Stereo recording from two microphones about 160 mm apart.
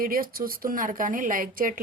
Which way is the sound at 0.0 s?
65° right (ahead or behind).